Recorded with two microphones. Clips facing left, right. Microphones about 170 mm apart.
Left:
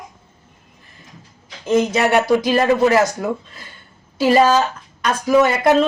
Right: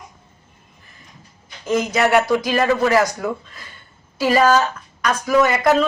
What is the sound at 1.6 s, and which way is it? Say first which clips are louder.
Speech: left 2 dB; 25° left (ahead or behind).